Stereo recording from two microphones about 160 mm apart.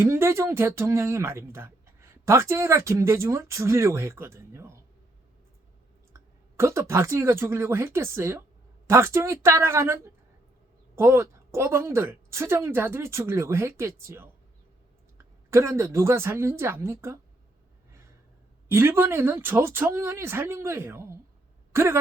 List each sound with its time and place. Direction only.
0.0 s speech: 15° right (ahead or behind)
6.1 s speech: 15° right (ahead or behind)
15.4 s speech: 15° right (ahead or behind)
18.7 s speech: 15° right (ahead or behind)